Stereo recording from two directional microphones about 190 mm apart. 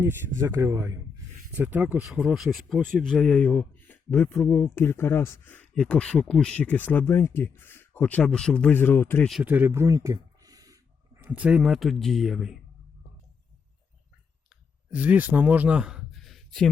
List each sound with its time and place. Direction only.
0.0 s speech: 15° right (ahead or behind); by 9.3 s 10° left (ahead or behind)
9.3 s a man's voice: 5° right (ahead or behind)
11.2 s speech: 5° right (ahead or behind)
14.8 s a man's voice: 10° right (ahead or behind)